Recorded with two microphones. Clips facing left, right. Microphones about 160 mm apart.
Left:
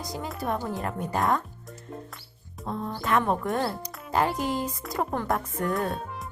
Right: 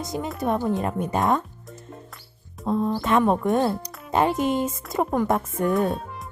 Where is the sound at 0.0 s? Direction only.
20° right (ahead or behind).